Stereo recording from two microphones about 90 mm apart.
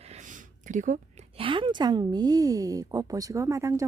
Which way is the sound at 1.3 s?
70° right (ahead or behind).